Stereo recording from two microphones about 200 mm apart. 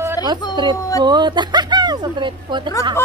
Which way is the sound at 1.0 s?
20° right (ahead or behind).